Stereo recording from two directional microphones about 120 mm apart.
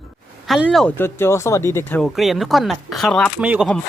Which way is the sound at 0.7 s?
5° left (ahead or behind).